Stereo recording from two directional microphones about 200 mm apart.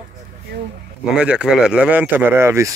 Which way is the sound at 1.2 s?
5° right (ahead or behind).